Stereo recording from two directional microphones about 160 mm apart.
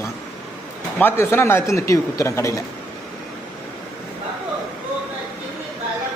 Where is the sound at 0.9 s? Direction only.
15° left (ahead or behind).